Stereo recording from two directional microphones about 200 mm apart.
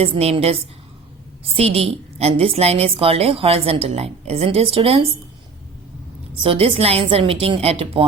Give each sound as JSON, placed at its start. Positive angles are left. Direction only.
{"t": 0.0, "sound": "a woman's voice", "side_deg": -30}
{"t": 6.4, "sound": "a woman's voice", "side_deg": -25}